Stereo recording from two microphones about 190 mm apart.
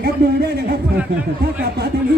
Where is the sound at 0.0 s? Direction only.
55° right (ahead or behind).